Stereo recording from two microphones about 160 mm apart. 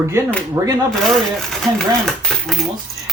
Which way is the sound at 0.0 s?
15° right (ahead or behind).